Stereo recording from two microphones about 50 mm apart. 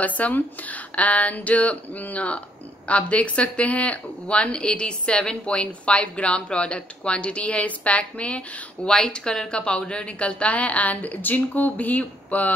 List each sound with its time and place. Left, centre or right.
0.0 s speech: left